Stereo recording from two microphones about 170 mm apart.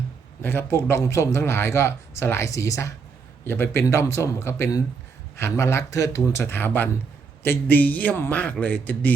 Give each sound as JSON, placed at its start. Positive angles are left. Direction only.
{"t": 0.4, "sound": "speech", "side_deg": 15}